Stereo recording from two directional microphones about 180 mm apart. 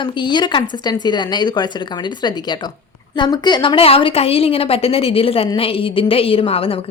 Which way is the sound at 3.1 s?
25° left (ahead or behind).